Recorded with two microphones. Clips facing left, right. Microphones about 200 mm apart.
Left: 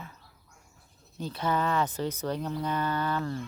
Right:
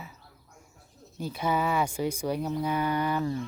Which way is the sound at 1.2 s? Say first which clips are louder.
Right 1 dB; 10° right (ahead or behind).